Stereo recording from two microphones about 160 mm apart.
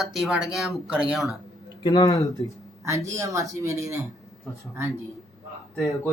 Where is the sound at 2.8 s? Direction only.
20° right (ahead or behind).